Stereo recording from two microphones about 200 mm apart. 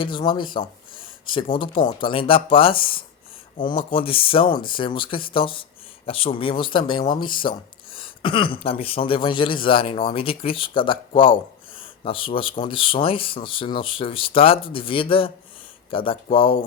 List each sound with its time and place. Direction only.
0.0 s speech: 25° left (ahead or behind)